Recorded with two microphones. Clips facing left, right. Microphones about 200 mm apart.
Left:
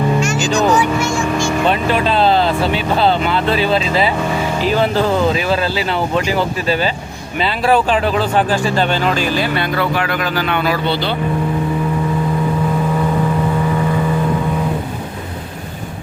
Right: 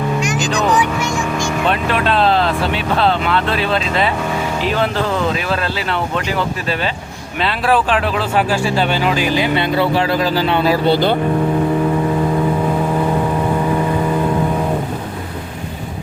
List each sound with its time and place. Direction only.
0.5 s speech: centre (ahead or behind)
0.8 s vehicle: 15° right (ahead or behind)
1.6 s speech: centre (ahead or behind); by 10.9 s 30° right (ahead or behind)
10.9 s speech: 50° right (ahead or behind)